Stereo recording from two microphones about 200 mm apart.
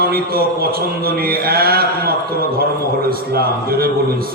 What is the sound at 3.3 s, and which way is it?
Mantra, 50° right (ahead or behind).